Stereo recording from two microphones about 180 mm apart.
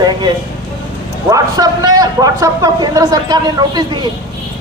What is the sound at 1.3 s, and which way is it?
A man's voice, 20° right (ahead or behind).